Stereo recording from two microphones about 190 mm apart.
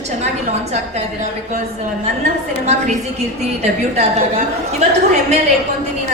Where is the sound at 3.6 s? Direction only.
35° right (ahead or behind).